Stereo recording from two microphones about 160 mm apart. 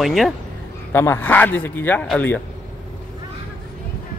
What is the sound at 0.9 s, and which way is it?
Speech, 15° left (ahead or behind).